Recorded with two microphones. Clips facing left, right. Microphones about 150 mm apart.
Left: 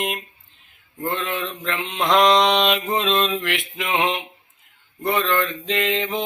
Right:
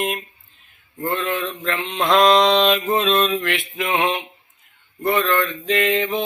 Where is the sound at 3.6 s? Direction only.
Centre (ahead or behind).